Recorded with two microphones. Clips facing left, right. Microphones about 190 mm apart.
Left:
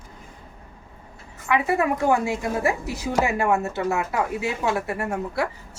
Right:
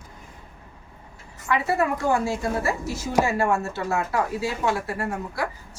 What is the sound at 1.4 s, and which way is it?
A woman's voice, 20° left (ahead or behind).